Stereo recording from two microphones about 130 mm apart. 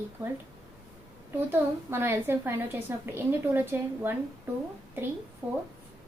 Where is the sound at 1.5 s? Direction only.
15° right (ahead or behind).